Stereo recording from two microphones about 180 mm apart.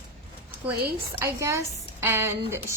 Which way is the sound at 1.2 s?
15° right (ahead or behind).